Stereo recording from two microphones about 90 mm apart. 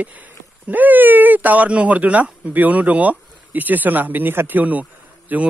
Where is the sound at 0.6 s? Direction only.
20° right (ahead or behind).